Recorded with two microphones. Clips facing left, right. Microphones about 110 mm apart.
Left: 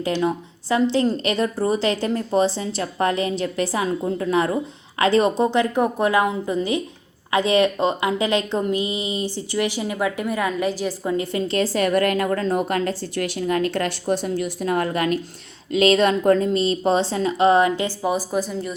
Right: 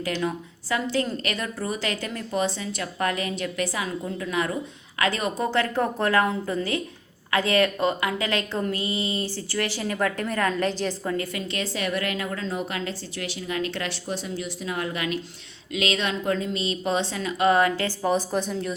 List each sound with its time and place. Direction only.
0.0 s a woman's voice: 25° left (ahead or behind); by 18.8 s centre (ahead or behind)